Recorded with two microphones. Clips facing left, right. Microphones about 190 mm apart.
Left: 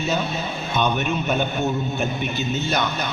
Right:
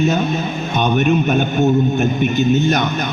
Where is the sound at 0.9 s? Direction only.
60° right (ahead or behind).